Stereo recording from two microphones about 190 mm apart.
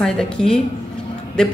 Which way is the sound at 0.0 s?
5° left (ahead or behind).